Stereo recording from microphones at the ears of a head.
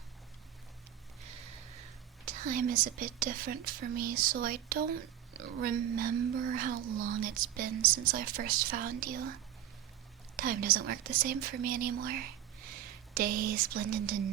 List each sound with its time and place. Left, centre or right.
1.2 s speech: right